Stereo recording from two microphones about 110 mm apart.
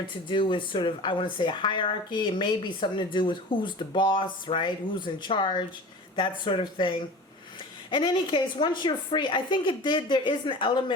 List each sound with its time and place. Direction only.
0.3 s a woman's voice: 50° left (ahead or behind)